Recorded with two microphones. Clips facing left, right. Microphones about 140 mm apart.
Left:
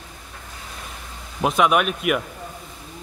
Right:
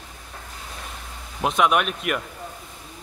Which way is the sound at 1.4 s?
Centre (ahead or behind).